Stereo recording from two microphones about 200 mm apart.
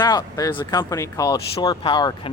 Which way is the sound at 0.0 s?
20° left (ahead or behind).